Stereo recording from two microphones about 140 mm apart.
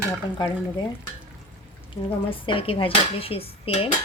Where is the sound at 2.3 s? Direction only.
40° left (ahead or behind).